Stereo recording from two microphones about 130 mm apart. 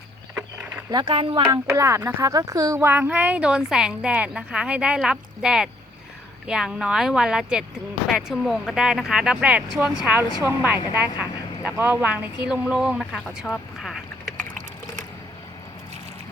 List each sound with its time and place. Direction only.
0.9 s speech: 35° right (ahead or behind)
1.5 s a woman's voice: 25° right (ahead or behind); by 13.9 s centre (ahead or behind)